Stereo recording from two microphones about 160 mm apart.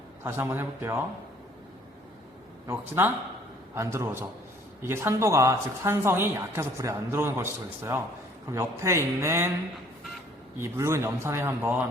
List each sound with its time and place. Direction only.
0.2 s speech: 15° right (ahead or behind)
2.6 s speech: 15° right (ahead or behind)
10.6 s speech: 15° right (ahead or behind)